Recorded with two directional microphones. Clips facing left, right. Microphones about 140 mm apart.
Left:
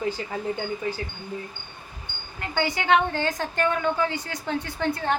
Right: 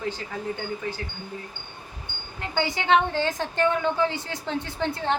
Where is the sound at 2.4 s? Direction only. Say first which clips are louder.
Left 1 dB; 25° right (ahead or behind).